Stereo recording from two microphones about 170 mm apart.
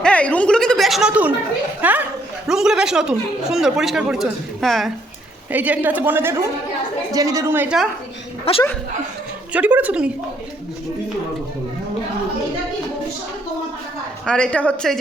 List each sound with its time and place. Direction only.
0.0 s a sound: 5° left (ahead or behind)
1.8 s a woman's voice: 10° right (ahead or behind)
5.5 s a woman's voice: 10° right (ahead or behind)
8.5 s a woman's voice: 35° left (ahead or behind)
9.5 s a woman's voice: 10° right (ahead or behind)
14.3 s a man's voice: 5° left (ahead or behind)